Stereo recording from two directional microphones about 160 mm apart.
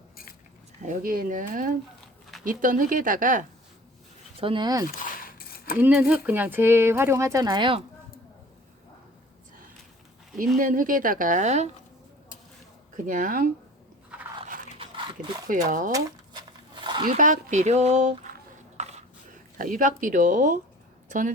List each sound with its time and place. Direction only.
0.8 s speech: 55° right (ahead or behind)
4.4 s speech: 30° right (ahead or behind)
4.9 s mechanisms: 60° left (ahead or behind)
5.7 s speech: 10° right (ahead or behind); by 7.8 s 30° right (ahead or behind)
10.6 s speech: 60° right (ahead or behind)
13.0 s speech: 55° right (ahead or behind)
14.8 s dog: 30° right (ahead or behind)
15.9 s a sound: 25° right (ahead or behind)
17.1 s speech: 55° right (ahead or behind)
18.8 s a sound: 45° right (ahead or behind)
19.5 s speech: 55° right (ahead or behind)